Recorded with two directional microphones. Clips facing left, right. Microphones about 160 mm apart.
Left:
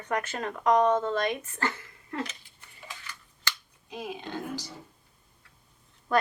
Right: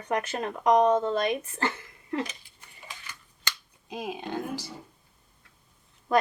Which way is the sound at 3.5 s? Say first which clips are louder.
Even; 15° right (ahead or behind).